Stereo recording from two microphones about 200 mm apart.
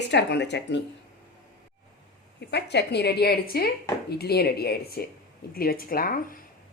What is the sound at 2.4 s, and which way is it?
A woman's voice, 60° left (ahead or behind).